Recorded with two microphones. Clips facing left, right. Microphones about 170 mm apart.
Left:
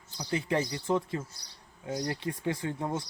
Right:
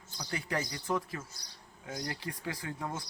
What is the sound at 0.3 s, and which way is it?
Speech, 25° left (ahead or behind).